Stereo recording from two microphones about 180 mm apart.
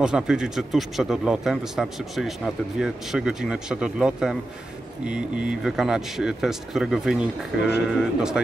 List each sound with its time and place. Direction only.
0.0 s speech: 5° right (ahead or behind)